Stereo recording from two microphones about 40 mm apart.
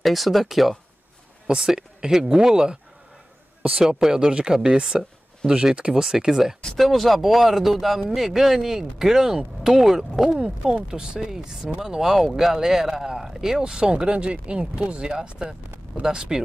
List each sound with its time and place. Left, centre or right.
0.0 s speech: centre
1.7 s speech: centre
3.8 s speech: centre
4.2 s speech: right
6.0 s speech: centre
6.8 s speech: centre